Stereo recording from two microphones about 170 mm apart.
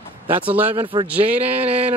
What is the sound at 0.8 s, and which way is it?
Speech, 30° right (ahead or behind).